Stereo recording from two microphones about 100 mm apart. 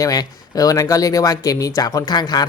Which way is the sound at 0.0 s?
40° left (ahead or behind).